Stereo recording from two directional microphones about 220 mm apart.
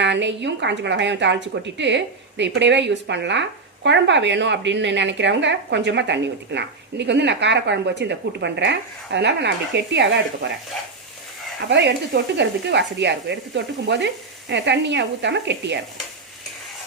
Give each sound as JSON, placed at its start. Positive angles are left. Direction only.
{"t": 0.0, "sound": "a woman's voice", "side_deg": -55}
{"t": 11.7, "sound": "a woman's voice", "side_deg": -50}